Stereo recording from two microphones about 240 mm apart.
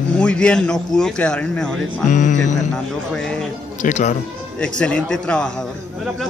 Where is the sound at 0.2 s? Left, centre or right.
Centre.